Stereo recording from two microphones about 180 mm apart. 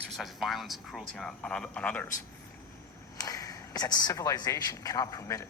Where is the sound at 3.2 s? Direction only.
20° left (ahead or behind).